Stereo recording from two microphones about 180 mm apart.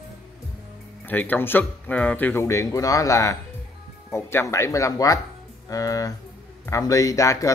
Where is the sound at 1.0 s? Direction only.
10° left (ahead or behind).